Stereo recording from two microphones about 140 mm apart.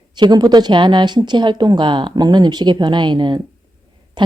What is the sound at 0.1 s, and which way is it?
Speech, 30° right (ahead or behind).